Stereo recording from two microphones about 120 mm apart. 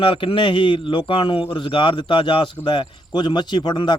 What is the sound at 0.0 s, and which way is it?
A man's voice, 45° left (ahead or behind).